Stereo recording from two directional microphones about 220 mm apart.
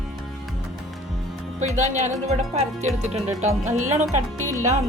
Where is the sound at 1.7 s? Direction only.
35° right (ahead or behind).